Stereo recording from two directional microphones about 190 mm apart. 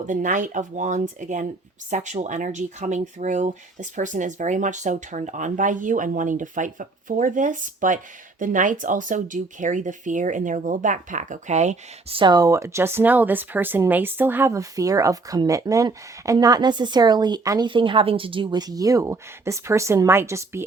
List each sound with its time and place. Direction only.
0.0 s speech: 40° right (ahead or behind); by 20.7 s 15° right (ahead or behind)